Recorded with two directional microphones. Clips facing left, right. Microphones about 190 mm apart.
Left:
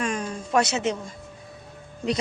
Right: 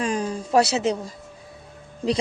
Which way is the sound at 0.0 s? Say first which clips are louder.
Right 3 dB; 35° right (ahead or behind).